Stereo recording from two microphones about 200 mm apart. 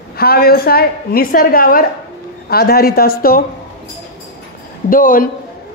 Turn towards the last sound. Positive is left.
turn(degrees=45)  # may be behind; listen again after turning